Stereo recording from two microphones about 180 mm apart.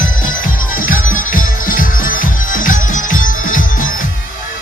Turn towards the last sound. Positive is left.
turn(degrees=45)  # may be behind; listen again after turning